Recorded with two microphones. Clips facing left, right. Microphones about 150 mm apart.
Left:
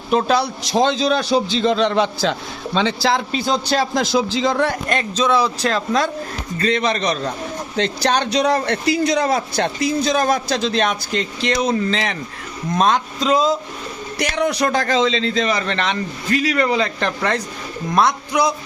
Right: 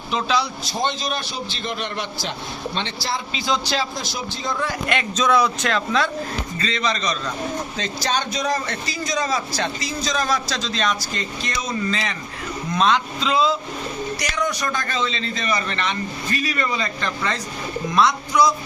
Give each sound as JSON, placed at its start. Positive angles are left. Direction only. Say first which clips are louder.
{"t": 0.1, "sound": "speech", "louder": "left 5 dB", "side_deg": 50}
{"t": 0.6, "sound": "a man's voice", "louder": "left 8 dB", "side_deg": 90}
{"t": 3.3, "sound": "a man's voice", "louder": "left 4 dB", "side_deg": 55}
{"t": 4.9, "sound": "speech", "louder": "left 2 dB", "side_deg": 35}
{"t": 6.6, "sound": "a man's voice", "louder": "left 7 dB", "side_deg": 55}
{"t": 12.7, "sound": "speech", "louder": "left 2 dB", "side_deg": 45}
{"t": 14.2, "sound": "a man's voice", "louder": "left 10 dB", "side_deg": 60}